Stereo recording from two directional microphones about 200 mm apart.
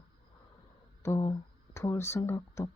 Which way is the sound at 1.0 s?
15° left (ahead or behind).